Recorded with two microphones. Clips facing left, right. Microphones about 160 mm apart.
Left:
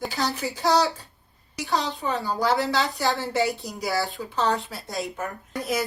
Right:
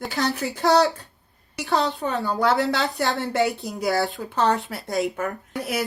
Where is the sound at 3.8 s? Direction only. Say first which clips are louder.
Right 5 dB; 55° right (ahead or behind).